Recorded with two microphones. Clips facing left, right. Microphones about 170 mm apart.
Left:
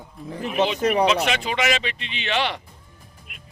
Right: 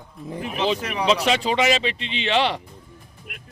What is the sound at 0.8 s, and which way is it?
Speech, 35° left (ahead or behind).